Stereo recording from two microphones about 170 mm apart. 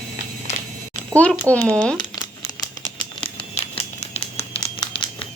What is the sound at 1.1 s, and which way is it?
Speech, 10° left (ahead or behind).